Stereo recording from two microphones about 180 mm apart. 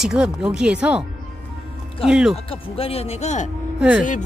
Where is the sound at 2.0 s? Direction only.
5° right (ahead or behind).